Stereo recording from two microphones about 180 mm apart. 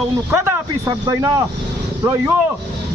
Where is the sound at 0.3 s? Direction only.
15° right (ahead or behind).